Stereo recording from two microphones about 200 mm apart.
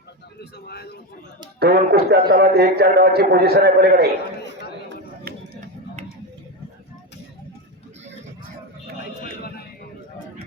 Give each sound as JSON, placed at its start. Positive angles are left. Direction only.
{"t": 0.3, "sound": "speech", "side_deg": 55}
{"t": 1.5, "sound": "a man's voice", "side_deg": -50}
{"t": 5.2, "sound": "a sound", "side_deg": -40}